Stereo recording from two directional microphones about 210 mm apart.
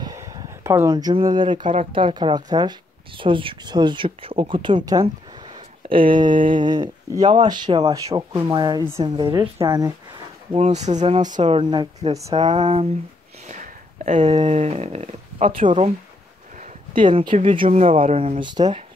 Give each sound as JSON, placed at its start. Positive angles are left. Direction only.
{"t": 0.0, "sound": "speech", "side_deg": -15}
{"t": 10.5, "sound": "speech", "side_deg": -35}
{"t": 11.4, "sound": "speech", "side_deg": -25}
{"t": 13.5, "sound": "a sound", "side_deg": -35}
{"t": 14.3, "sound": "speech", "side_deg": -30}
{"t": 17.0, "sound": "speech", "side_deg": -20}
{"t": 17.3, "sound": "speech", "side_deg": -35}